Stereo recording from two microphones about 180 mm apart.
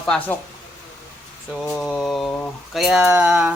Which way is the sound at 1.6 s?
Centre (ahead or behind).